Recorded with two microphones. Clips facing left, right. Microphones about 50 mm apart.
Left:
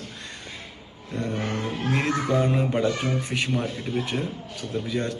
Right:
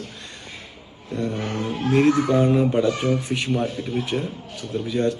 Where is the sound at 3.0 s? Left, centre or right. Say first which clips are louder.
Right 4 dB; left.